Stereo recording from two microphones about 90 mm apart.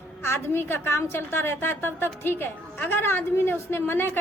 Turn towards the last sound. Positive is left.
turn(degrees=25)  # may be behind; listen again after turning